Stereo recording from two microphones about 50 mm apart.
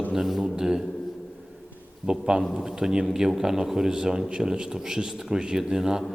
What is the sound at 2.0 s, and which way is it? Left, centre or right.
A man's voice, centre.